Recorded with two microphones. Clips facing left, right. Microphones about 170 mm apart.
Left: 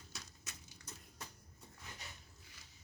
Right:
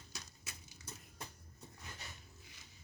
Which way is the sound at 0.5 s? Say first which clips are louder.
Right 1 dB; 10° right (ahead or behind).